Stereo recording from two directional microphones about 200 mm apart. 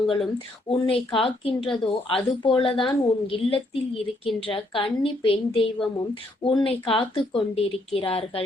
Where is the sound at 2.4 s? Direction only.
25° left (ahead or behind).